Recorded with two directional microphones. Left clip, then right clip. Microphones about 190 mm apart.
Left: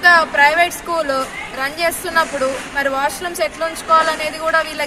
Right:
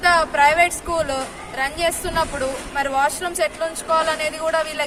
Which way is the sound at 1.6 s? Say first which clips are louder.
Left 2 dB; 25° right (ahead or behind).